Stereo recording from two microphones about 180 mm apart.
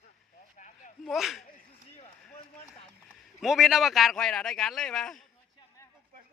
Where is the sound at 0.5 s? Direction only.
45° left (ahead or behind).